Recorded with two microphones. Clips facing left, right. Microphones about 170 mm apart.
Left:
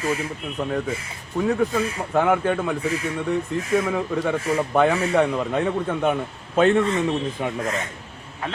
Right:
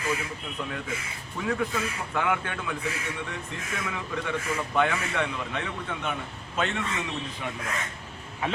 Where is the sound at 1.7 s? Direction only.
40° left (ahead or behind).